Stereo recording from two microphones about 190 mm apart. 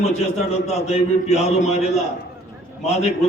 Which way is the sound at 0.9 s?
35° left (ahead or behind).